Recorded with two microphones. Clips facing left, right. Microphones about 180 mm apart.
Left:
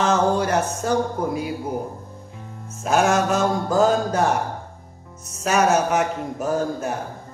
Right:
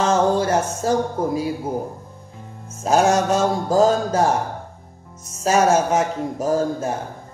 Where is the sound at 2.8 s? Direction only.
35° right (ahead or behind).